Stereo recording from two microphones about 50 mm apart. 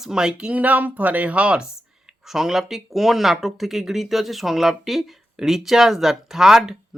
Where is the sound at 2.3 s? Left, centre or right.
Centre.